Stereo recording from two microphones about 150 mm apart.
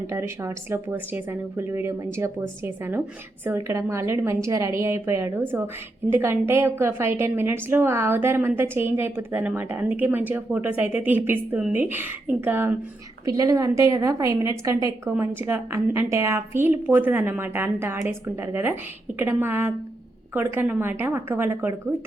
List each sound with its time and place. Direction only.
0.1 s a woman's voice: 20° right (ahead or behind)
13.2 s a woman's voice: 25° right (ahead or behind)